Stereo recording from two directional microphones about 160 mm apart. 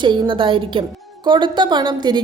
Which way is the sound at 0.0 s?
30° right (ahead or behind).